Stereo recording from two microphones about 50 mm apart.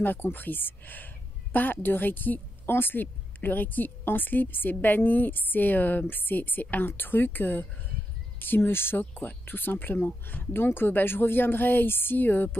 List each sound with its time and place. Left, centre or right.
0.0 s speech: left